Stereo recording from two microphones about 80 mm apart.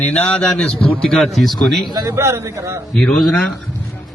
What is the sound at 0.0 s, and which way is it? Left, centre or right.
Speech, centre.